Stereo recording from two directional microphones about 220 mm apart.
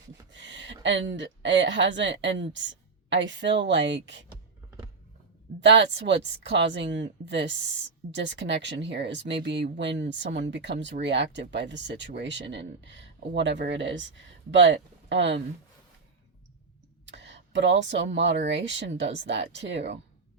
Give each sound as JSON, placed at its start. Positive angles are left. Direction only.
{"t": 0.3, "sound": "a woman's voice", "side_deg": -55}
{"t": 5.5, "sound": "speech", "side_deg": -55}
{"t": 17.1, "sound": "speech", "side_deg": -55}